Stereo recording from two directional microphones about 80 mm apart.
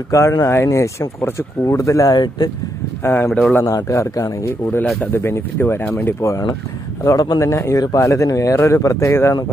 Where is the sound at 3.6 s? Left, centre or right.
Left.